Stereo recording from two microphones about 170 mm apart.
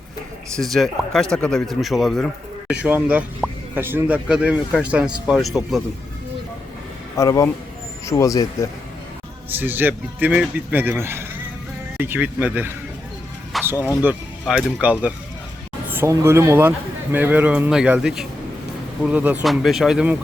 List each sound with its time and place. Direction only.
0.5 s a man's voice: centre (ahead or behind)
7.2 s a man's voice: 20° left (ahead or behind)
9.5 s a man's voice: 10° right (ahead or behind)
13.5 s music: centre (ahead or behind)
14.0 s a man's voice: 5° right (ahead or behind)